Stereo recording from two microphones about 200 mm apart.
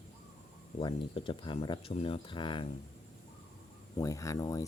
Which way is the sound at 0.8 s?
25° left (ahead or behind).